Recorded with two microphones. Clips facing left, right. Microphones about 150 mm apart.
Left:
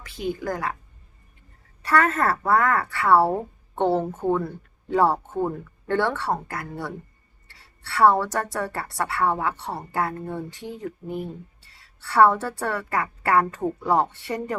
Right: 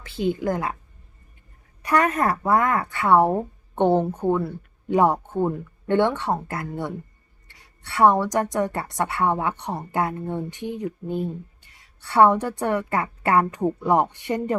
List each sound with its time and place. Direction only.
0.0 s a woman's voice: 30° right (ahead or behind)
1.8 s a woman's voice: 15° right (ahead or behind)